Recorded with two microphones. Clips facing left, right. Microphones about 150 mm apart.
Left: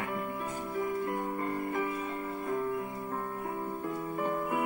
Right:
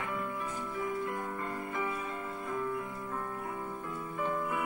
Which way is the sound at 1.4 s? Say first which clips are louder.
Left 4 dB; 45° left (ahead or behind).